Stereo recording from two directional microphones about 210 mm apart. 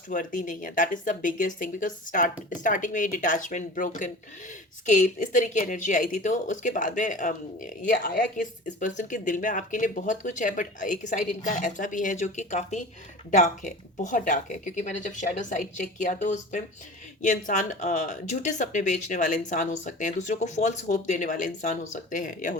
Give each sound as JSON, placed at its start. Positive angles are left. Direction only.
{"t": 0.1, "sound": "speech", "side_deg": 40}